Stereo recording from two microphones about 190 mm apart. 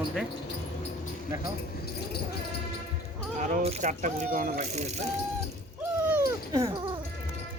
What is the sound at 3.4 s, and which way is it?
Speech, 40° right (ahead or behind).